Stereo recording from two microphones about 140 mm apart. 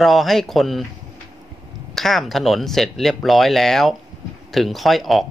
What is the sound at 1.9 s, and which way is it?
Speech, centre (ahead or behind).